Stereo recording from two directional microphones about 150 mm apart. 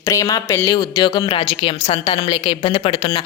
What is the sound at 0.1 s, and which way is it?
A woman's voice, 20° left (ahead or behind).